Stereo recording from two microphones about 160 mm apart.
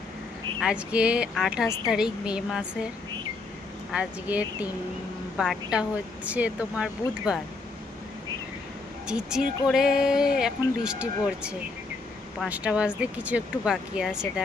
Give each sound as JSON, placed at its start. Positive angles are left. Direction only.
{"t": 0.6, "sound": "speech", "side_deg": -5}
{"t": 1.6, "sound": "a woman's voice", "side_deg": 20}
{"t": 1.9, "sound": "speech", "side_deg": -5}
{"t": 3.9, "sound": "speech", "side_deg": -10}
{"t": 9.0, "sound": "speech", "side_deg": -5}